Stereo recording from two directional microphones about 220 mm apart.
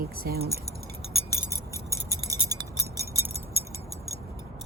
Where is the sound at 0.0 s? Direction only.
45° right (ahead or behind).